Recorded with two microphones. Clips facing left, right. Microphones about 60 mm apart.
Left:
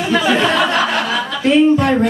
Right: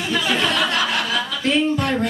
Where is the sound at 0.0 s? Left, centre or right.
Left.